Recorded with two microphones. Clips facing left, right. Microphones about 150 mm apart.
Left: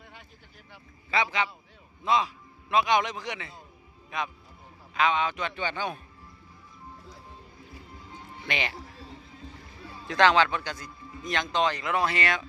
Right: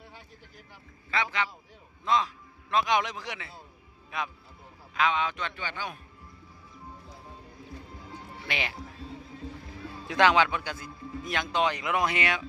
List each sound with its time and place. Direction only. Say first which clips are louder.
1.1 s a man's voice: left 3 dB; 15° left (ahead or behind); by 5.4 s centre (ahead or behind)
5.6 s a man's voice: left 5 dB; 25° left (ahead or behind)
8.5 s speech: left 2 dB; 5° right (ahead or behind)
10.0 s speech: left 1 dB; 10° right (ahead or behind)